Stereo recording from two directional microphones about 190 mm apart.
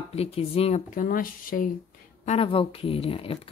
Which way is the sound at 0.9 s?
45° left (ahead or behind).